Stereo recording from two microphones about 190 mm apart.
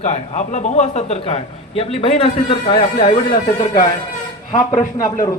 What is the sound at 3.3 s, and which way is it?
A man's voice, 45° left (ahead or behind).